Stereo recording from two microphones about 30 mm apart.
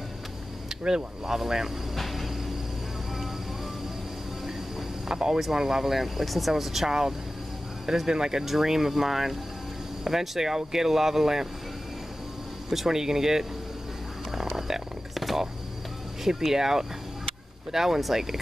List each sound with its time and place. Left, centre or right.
0.8 s speech: right
2.0 s train: centre
5.0 s speech: centre
5.9 s speech: centre; by 8.5 s right
8.5 s speech: centre
12.6 s speech: centre
14.3 s a sound: centre
16.3 s speech: centre